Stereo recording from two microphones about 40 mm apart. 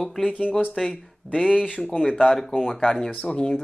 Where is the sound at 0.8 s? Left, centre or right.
Left.